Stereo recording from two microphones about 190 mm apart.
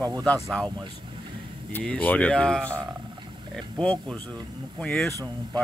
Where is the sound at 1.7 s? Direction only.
5° left (ahead or behind).